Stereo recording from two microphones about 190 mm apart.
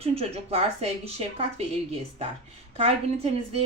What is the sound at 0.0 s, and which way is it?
Speech, 30° right (ahead or behind).